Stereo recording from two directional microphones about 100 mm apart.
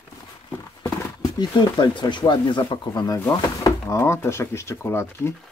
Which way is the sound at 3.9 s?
30° left (ahead or behind).